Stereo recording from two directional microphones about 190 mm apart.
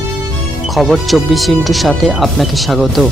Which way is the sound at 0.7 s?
Centre (ahead or behind).